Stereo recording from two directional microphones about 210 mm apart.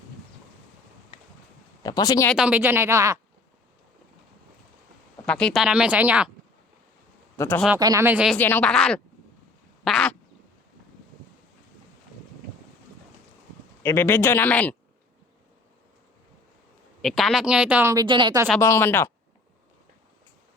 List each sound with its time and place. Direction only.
1.8 s a man's voice: 20° left (ahead or behind)
2.3 s speech: 5° right (ahead or behind)
5.2 s speech: 5° left (ahead or behind)
7.3 s a man's voice: 10° left (ahead or behind)
7.8 s speech: 15° right (ahead or behind)
8.4 s speech: 10° left (ahead or behind)
13.8 s a man's voice: 10° left (ahead or behind)
17.0 s speech: centre (ahead or behind)
18.0 s speech: 25° right (ahead or behind)
18.6 s a man's voice: 10° left (ahead or behind)